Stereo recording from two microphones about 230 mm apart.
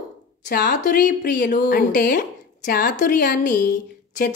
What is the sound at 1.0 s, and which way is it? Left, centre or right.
A woman's voice, left.